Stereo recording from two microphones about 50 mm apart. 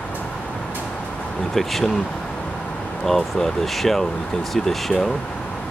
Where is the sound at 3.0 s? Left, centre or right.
Centre.